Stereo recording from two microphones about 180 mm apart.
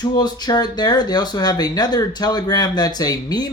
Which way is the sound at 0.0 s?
20° left (ahead or behind).